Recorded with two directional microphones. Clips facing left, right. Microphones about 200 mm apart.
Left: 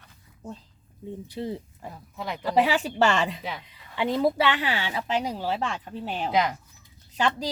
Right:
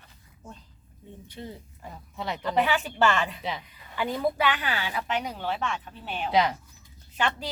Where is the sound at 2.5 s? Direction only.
30° left (ahead or behind).